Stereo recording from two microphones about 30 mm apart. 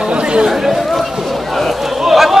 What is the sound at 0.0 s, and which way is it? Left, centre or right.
Chatter, right.